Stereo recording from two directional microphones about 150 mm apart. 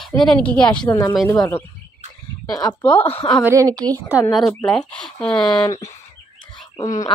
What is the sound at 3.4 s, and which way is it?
Speech, 20° right (ahead or behind).